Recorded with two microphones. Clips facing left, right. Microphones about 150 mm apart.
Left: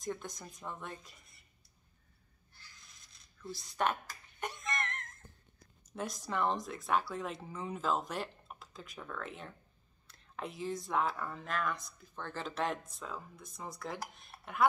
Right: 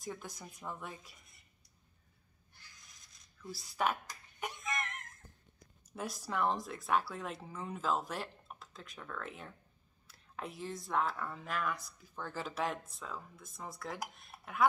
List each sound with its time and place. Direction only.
0.0 s speech: 5° right (ahead or behind)
3.4 s speech: 5° right (ahead or behind)
4.4 s a sound: 5° right (ahead or behind)
5.9 s speech: 5° right (ahead or behind)